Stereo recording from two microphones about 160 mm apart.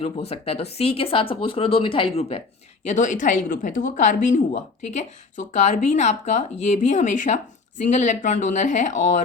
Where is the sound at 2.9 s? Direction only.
50° left (ahead or behind).